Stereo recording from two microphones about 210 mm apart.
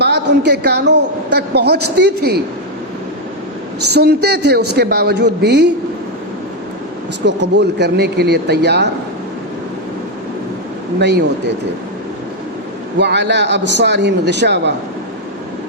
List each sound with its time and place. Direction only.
0.0 s a woman's voice: 55° right (ahead or behind)
3.9 s a woman's voice: 50° right (ahead or behind)
7.5 s a woman's voice: 55° right (ahead or behind)
11.0 s a woman's voice: 55° right (ahead or behind)
13.0 s speech: 55° right (ahead or behind)